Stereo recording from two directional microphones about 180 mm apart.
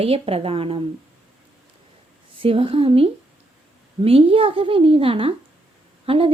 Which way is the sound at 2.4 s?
30° right (ahead or behind).